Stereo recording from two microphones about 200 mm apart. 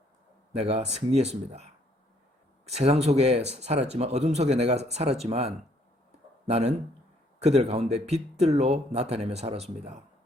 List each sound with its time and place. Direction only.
0.5 s speech: 30° right (ahead or behind)